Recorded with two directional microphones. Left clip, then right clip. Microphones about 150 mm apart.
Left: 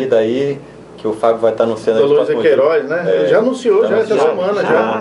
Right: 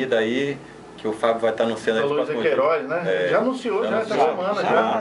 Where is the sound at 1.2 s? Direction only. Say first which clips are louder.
Left 7 dB; 10° right (ahead or behind).